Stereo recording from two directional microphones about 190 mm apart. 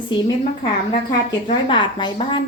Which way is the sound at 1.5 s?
25° left (ahead or behind).